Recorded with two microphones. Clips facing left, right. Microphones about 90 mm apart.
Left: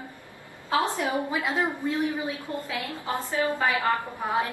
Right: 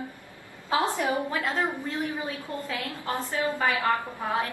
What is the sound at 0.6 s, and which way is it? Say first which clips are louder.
Speech: even; 15° right (ahead or behind).